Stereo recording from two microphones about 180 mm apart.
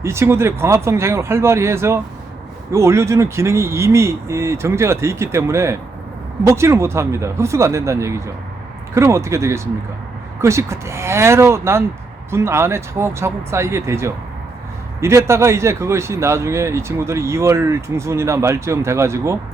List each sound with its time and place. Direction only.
0.0 s speech: 15° right (ahead or behind)